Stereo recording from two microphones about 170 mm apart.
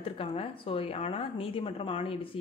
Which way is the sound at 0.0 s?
35° left (ahead or behind).